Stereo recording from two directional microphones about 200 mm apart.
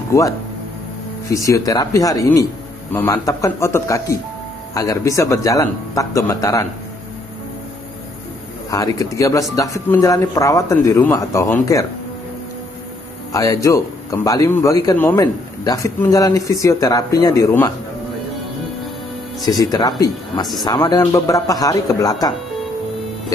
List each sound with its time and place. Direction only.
0.1 s speech: 15° left (ahead or behind)
1.3 s speech: 15° left (ahead or behind)
8.6 s speech: 15° left (ahead or behind)
13.3 s speech: 15° left (ahead or behind)
19.4 s speech: 20° left (ahead or behind)